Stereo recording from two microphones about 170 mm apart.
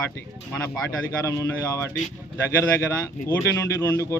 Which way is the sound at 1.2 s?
15° left (ahead or behind).